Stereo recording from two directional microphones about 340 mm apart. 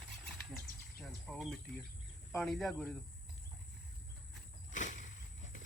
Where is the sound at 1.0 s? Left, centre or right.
Centre.